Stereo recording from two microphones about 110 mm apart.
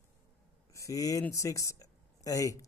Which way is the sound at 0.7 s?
30° left (ahead or behind).